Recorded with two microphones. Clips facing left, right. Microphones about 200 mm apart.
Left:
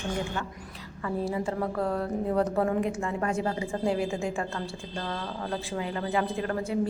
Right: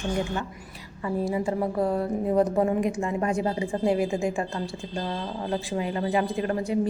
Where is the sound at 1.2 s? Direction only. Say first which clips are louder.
Right 4 dB; 15° right (ahead or behind).